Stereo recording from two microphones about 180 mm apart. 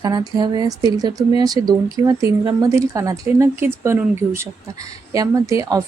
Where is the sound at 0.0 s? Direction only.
20° right (ahead or behind).